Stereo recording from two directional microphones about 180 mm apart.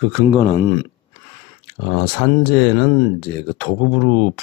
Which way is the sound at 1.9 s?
20° left (ahead or behind).